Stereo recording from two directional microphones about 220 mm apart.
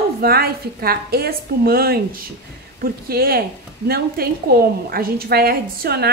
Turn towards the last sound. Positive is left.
turn(degrees=-45)  # may be behind; listen again after turning